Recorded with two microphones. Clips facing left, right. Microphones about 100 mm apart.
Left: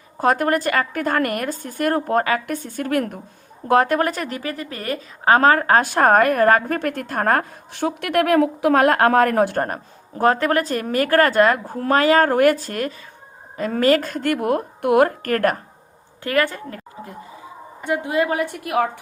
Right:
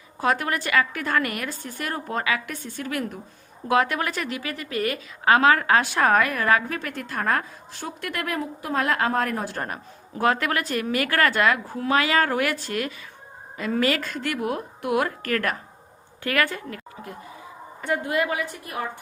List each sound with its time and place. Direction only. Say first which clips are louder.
0.2 s a woman's voice: left 6 dB; 45° left (ahead or behind)
16.2 s a woman's voice: left 4 dB; 30° left (ahead or behind)
17.7 s a woman's voice: left 4 dB; 20° left (ahead or behind)
18.4 s a woman's voice: left 10 dB; 75° left (ahead or behind)